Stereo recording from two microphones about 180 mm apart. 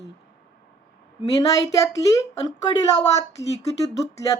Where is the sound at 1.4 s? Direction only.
20° left (ahead or behind).